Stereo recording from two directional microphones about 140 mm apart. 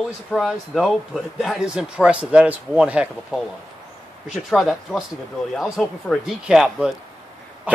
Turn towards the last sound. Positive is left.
turn(degrees=-5)  # may be behind; listen again after turning